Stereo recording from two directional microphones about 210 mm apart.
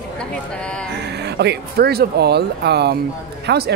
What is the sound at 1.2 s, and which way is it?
Speech, 50° right (ahead or behind).